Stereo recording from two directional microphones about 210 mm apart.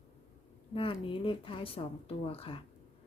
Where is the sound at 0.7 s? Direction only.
25° left (ahead or behind).